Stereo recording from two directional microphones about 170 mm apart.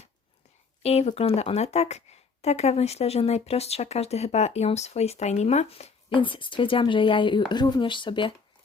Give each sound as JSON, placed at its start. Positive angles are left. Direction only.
{"t": 0.8, "sound": "speech", "side_deg": 40}